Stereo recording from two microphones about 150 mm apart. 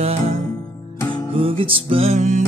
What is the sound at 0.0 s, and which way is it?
Music, 45° right (ahead or behind).